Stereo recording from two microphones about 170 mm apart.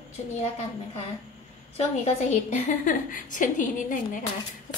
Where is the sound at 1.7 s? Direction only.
40° left (ahead or behind).